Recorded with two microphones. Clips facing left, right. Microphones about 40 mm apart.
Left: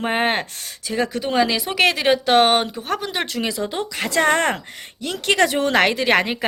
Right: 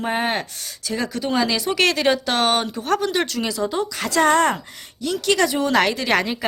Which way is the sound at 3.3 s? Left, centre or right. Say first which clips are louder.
Right 1 dB; left.